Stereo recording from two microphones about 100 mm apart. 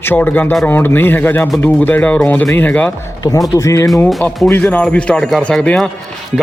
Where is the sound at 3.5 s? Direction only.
30° left (ahead or behind).